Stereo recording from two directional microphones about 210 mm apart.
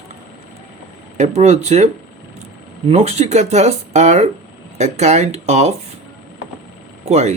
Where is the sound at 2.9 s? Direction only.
30° right (ahead or behind).